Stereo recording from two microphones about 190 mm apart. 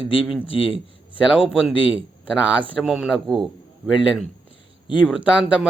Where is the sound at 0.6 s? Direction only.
30° left (ahead or behind).